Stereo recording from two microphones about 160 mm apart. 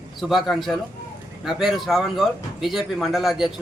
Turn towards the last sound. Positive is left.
turn(degrees=0)  # may be behind; listen again after turning